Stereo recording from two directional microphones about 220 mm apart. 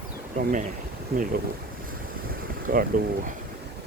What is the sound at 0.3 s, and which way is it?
Speech, 35° right (ahead or behind).